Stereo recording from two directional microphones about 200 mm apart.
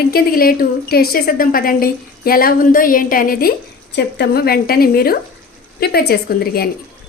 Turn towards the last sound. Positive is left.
turn(degrees=50)  # may be behind; listen again after turning